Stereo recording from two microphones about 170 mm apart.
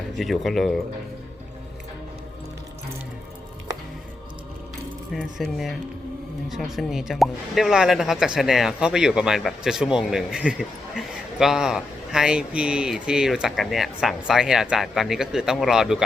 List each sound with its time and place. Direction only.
0.2 s speech: centre (ahead or behind)
5.1 s speech: centre (ahead or behind)